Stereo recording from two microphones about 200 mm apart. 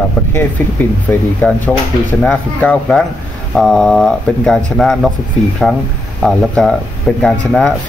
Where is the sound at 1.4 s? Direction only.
10° left (ahead or behind).